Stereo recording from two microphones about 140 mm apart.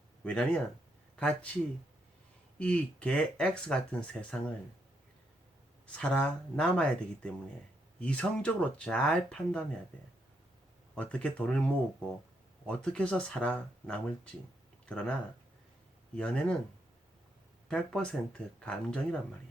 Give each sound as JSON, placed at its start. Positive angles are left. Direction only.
{"t": 0.3, "sound": "speech", "side_deg": 10}
{"t": 2.6, "sound": "speech", "side_deg": 10}
{"t": 5.8, "sound": "speech", "side_deg": 10}
{"t": 10.9, "sound": "speech", "side_deg": 10}
{"t": 16.1, "sound": "speech", "side_deg": 10}
{"t": 17.7, "sound": "speech", "side_deg": 5}